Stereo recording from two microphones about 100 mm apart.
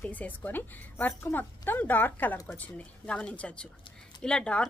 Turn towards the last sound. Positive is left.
turn(degrees=10)  # may be behind; listen again after turning